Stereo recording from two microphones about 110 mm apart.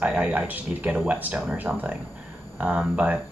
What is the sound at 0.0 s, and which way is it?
Speech, 10° right (ahead or behind).